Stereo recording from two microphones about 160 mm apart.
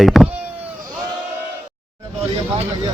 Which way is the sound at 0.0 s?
Centre (ahead or behind).